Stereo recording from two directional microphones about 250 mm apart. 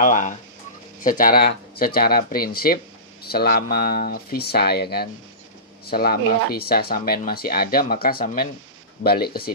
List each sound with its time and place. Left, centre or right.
0.0 s speech: left